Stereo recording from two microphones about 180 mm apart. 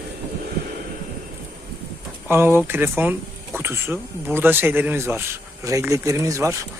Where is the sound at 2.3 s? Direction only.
15° right (ahead or behind).